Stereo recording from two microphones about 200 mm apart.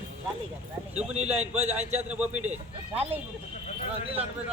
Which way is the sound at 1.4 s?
35° right (ahead or behind).